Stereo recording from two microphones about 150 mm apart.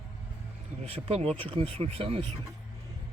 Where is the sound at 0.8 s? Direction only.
45° right (ahead or behind).